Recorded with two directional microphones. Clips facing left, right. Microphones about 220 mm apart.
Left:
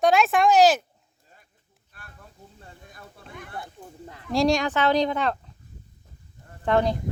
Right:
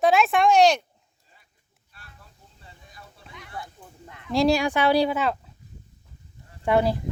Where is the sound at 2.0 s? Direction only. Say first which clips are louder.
Left 5 dB; 50° left (ahead or behind).